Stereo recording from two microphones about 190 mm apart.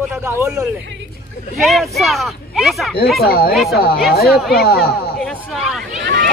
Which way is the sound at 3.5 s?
Centre (ahead or behind).